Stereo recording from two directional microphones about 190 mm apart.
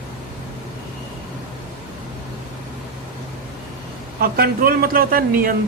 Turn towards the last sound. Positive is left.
turn(degrees=-50)  # may be behind; listen again after turning